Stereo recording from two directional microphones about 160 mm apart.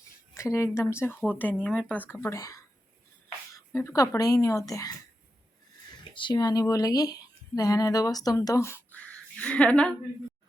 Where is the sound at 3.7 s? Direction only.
15° left (ahead or behind).